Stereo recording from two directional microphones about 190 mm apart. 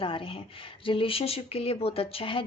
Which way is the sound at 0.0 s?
30° left (ahead or behind).